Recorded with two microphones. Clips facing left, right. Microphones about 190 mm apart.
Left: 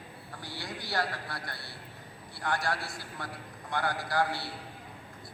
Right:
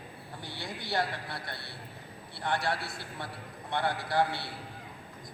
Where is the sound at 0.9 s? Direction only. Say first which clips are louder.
Right 1 dB; 25° right (ahead or behind).